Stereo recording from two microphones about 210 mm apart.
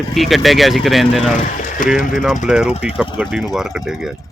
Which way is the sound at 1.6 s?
40° left (ahead or behind).